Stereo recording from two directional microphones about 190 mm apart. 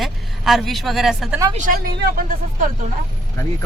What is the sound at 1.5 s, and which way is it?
Speech, 45° right (ahead or behind).